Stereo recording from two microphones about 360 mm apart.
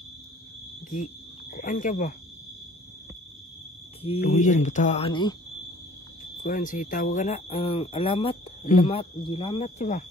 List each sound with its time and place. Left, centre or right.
0.8 s speech: left
4.0 s speech: centre
6.4 s speech: left